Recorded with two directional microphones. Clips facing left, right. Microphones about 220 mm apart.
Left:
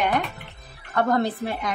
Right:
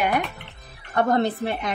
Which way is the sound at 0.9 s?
25° right (ahead or behind).